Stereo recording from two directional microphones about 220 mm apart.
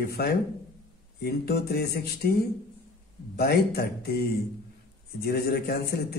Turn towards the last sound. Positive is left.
turn(degrees=45)  # may be behind; listen again after turning